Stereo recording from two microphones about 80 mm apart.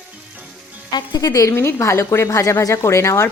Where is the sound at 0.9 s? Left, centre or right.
Left.